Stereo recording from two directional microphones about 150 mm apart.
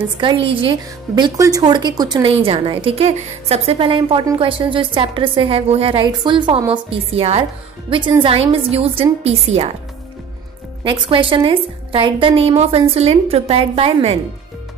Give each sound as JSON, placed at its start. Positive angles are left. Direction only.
{"t": 0.2, "sound": "a woman's voice", "side_deg": -35}
{"t": 10.8, "sound": "a woman's voice", "side_deg": -35}